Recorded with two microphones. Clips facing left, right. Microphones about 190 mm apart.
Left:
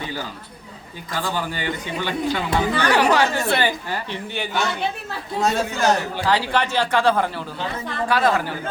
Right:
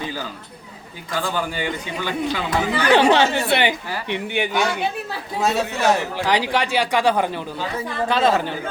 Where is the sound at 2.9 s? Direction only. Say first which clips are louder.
Right 5 dB; 25° right (ahead or behind).